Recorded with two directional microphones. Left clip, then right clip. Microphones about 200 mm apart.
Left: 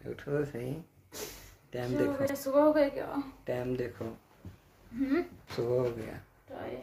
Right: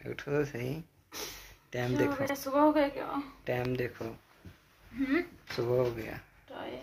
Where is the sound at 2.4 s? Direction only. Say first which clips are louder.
Left 1 dB; 5° left (ahead or behind).